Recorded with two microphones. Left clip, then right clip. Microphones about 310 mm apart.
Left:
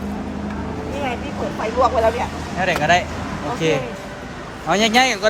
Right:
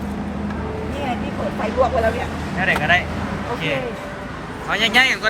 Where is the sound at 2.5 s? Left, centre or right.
Centre.